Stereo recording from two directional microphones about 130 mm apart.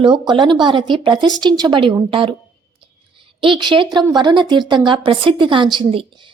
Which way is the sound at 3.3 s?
40° right (ahead or behind).